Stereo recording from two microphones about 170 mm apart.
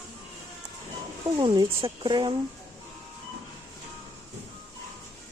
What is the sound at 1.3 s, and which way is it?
Speech, 25° right (ahead or behind).